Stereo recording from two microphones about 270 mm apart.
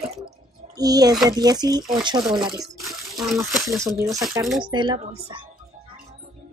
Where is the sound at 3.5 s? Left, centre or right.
Centre.